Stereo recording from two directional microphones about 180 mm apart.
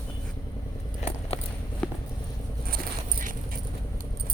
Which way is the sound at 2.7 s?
50° right (ahead or behind).